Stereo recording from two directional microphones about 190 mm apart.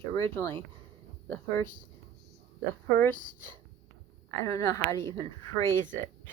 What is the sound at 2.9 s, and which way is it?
Speech, 10° left (ahead or behind).